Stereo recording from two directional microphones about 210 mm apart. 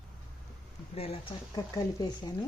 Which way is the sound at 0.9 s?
30° left (ahead or behind).